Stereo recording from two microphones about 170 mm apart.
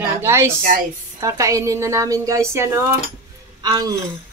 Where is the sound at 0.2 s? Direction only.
15° right (ahead or behind).